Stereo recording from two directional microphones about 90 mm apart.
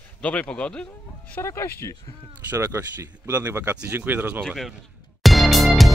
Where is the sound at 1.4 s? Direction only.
30° left (ahead or behind).